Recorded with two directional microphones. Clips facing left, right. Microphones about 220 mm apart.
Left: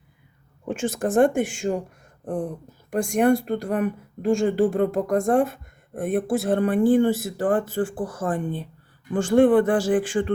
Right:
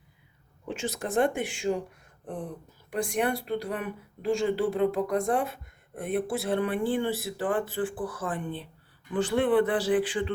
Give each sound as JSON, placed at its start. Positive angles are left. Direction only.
{"t": 0.7, "sound": "a woman's voice", "side_deg": 50}
{"t": 2.2, "sound": "a sound", "side_deg": 45}
{"t": 2.9, "sound": "a woman's voice", "side_deg": 45}